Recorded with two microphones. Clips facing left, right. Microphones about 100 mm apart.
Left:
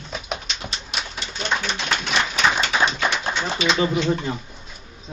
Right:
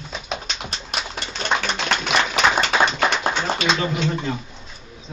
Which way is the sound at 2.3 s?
55° right (ahead or behind).